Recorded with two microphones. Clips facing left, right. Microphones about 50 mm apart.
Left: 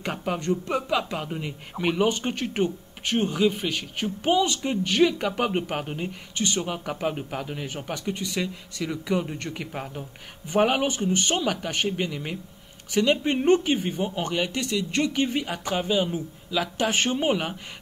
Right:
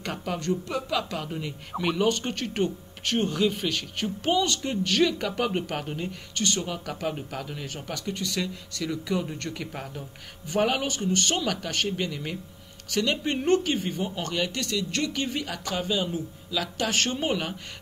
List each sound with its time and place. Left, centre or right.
0.0 s speech: centre